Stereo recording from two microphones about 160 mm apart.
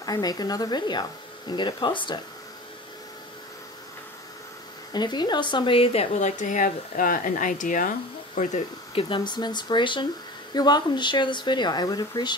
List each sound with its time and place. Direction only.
0.0 s speech: 25° left (ahead or behind)
4.9 s speech: 25° left (ahead or behind); by 8.5 s 55° left (ahead or behind)
8.9 s speech: 30° left (ahead or behind)